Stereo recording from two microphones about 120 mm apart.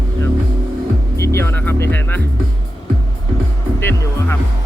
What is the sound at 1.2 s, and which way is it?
Speech, 20° left (ahead or behind).